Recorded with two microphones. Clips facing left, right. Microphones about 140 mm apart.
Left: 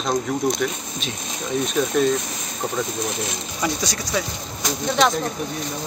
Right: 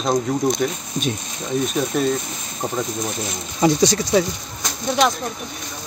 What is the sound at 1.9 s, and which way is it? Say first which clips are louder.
Speech: left 2 dB; 5° right (ahead or behind).